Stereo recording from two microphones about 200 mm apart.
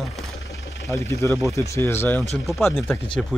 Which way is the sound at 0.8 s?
15° left (ahead or behind).